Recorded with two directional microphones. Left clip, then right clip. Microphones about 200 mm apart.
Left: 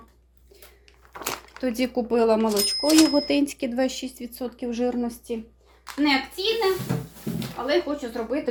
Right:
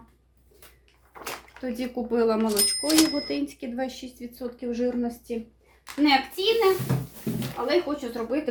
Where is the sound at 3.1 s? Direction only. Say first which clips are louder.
Left 6 dB; 40° left (ahead or behind).